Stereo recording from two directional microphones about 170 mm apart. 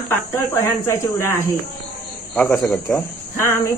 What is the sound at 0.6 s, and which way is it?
Speech, 15° left (ahead or behind).